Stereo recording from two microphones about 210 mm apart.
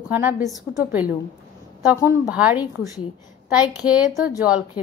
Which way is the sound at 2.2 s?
5° right (ahead or behind).